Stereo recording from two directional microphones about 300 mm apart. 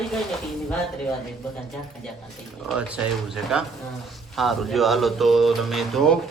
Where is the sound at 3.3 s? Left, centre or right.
Centre.